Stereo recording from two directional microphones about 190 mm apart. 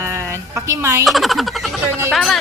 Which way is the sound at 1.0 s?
Centre (ahead or behind).